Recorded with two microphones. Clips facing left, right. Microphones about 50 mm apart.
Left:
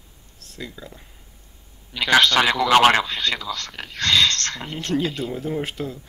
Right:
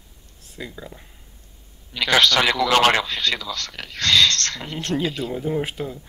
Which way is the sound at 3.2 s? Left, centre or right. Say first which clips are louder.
Even; left.